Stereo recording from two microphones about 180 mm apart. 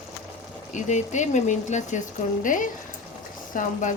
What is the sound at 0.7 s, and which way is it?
Speech, 40° left (ahead or behind).